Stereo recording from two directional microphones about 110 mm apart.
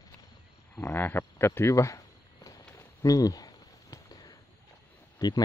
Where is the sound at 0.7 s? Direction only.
20° left (ahead or behind).